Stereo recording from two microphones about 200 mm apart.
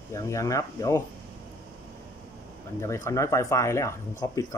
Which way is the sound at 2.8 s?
15° left (ahead or behind).